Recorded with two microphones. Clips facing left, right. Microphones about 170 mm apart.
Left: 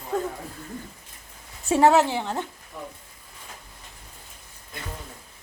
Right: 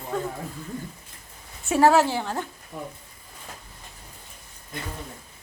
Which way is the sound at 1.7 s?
25° left (ahead or behind).